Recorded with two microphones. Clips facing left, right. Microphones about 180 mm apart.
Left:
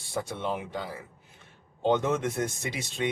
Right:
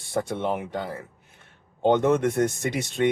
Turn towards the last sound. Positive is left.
turn(degrees=-60)  # may be behind; listen again after turning